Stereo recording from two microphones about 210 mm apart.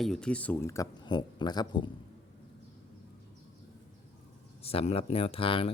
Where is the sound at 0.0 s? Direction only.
5° left (ahead or behind); by 1.9 s 20° left (ahead or behind).